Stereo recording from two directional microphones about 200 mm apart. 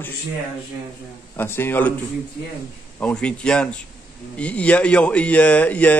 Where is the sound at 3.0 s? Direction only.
5° left (ahead or behind).